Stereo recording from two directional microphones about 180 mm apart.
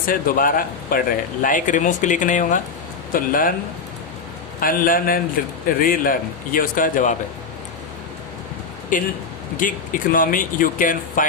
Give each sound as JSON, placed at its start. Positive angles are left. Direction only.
{"t": 0.0, "sound": "speech", "side_deg": 50}
{"t": 4.6, "sound": "speech", "side_deg": 50}
{"t": 8.9, "sound": "speech", "side_deg": 50}